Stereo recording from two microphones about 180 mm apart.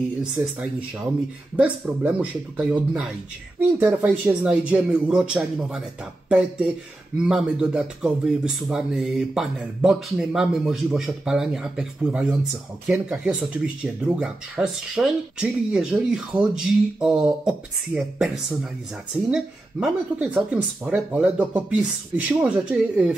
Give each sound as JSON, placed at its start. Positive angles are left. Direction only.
{"t": 0.2, "sound": "speech", "side_deg": -5}